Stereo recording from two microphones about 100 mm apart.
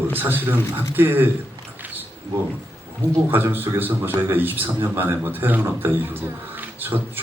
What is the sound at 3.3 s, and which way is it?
Speech, 20° right (ahead or behind).